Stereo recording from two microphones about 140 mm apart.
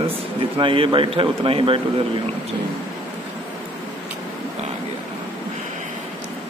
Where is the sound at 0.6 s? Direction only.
40° right (ahead or behind).